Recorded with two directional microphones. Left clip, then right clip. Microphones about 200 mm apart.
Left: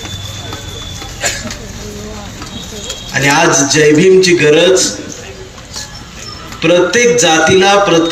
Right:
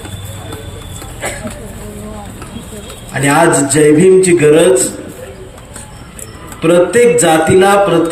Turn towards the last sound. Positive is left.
turn(degrees=-60)  # may be behind; listen again after turning